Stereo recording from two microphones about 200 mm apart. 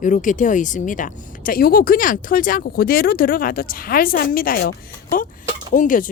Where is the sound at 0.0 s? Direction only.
40° left (ahead or behind).